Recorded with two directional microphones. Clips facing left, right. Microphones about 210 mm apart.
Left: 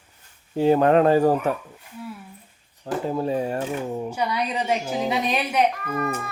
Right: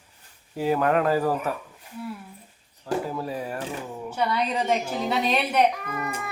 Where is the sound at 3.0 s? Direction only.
25° left (ahead or behind).